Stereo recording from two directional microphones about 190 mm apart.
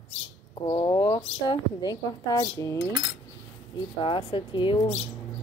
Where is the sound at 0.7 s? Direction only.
25° left (ahead or behind).